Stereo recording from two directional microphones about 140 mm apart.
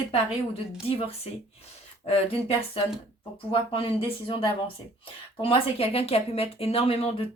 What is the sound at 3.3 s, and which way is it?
Speech, 40° left (ahead or behind).